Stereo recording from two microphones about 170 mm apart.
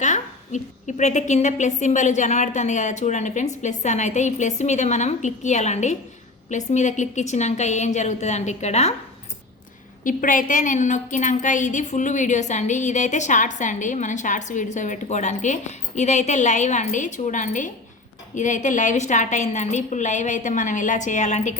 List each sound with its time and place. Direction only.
0.0 s a woman's voice: 45° left (ahead or behind)
10.0 s a woman's voice: 50° left (ahead or behind)